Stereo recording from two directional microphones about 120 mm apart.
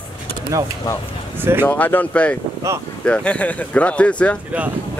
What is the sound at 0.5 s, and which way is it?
Speech, 25° right (ahead or behind).